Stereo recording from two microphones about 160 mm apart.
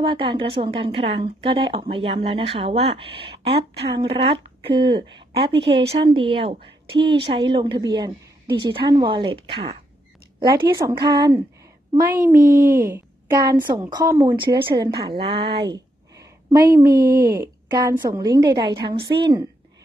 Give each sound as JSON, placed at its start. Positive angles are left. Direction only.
{"t": 0.1, "sound": "speech", "side_deg": -30}
{"t": 10.4, "sound": "a woman's voice", "side_deg": -25}
{"t": 12.1, "sound": "a woman's voice", "side_deg": -15}